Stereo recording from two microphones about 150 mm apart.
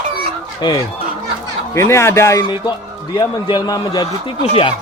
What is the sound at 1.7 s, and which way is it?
Speech, 20° left (ahead or behind).